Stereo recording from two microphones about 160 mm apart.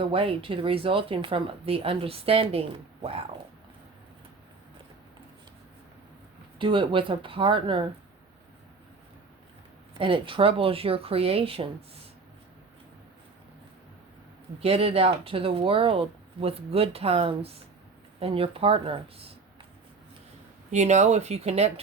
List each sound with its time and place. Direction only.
0.0 s speech: 35° right (ahead or behind)
6.6 s speech: 30° right (ahead or behind)
10.0 s speech: 35° right (ahead or behind)
14.6 s speech: 40° right (ahead or behind)
20.7 s speech: 45° right (ahead or behind)